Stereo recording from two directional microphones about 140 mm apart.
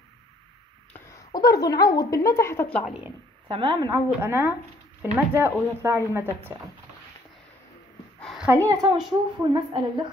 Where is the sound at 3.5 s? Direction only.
35° right (ahead or behind).